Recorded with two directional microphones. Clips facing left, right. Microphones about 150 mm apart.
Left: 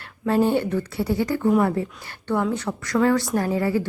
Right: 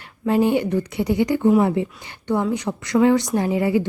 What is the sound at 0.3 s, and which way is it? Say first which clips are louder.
A woman's voice: right 2 dB; 15° right (ahead or behind).